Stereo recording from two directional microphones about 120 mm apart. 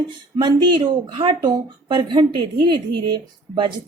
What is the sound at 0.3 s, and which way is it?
A woman's voice, 40° right (ahead or behind).